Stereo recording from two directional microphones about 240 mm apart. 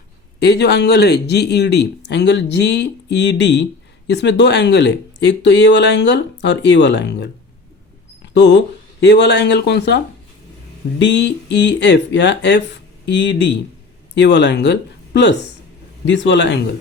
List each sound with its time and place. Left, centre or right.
0.3 s speech: left
8.2 s mouse: left
9.0 s speech: left
11.0 s speech: left